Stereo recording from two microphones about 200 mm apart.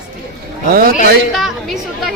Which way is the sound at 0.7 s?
50° right (ahead or behind).